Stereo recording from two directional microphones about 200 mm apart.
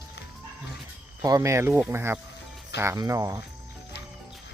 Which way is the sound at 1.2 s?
15° right (ahead or behind).